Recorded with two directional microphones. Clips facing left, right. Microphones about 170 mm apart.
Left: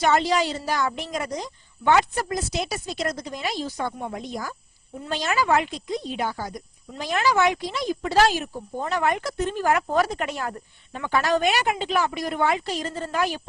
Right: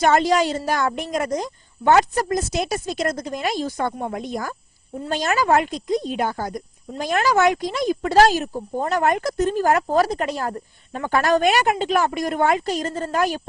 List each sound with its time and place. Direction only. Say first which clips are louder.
0.0 s speech: right 4 dB; 50° right (ahead or behind)